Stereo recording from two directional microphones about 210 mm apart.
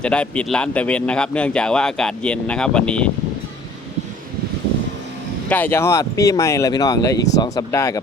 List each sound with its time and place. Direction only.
0.0 s speech: 5° left (ahead or behind)
5.5 s speech: 10° left (ahead or behind)